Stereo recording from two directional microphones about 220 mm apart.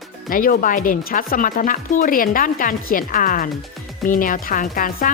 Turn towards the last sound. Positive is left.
turn(degrees=40)  # may be behind; listen again after turning